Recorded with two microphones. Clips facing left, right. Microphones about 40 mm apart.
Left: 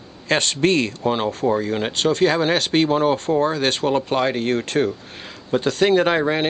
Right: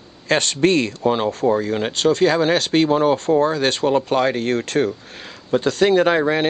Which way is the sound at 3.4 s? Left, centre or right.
Left.